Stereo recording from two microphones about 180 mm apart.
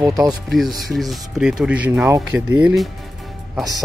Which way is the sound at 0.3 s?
Centre (ahead or behind).